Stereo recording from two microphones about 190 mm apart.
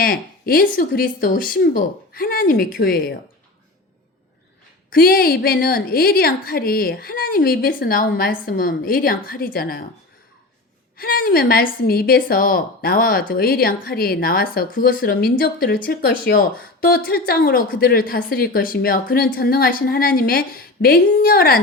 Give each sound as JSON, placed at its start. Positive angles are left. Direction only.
{"t": 0.0, "sound": "a woman's voice", "side_deg": 50}
{"t": 4.9, "sound": "a woman's voice", "side_deg": 50}
{"t": 10.9, "sound": "a woman's voice", "side_deg": 50}